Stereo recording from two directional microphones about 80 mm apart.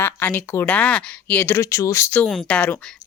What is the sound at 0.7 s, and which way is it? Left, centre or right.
Speech, centre.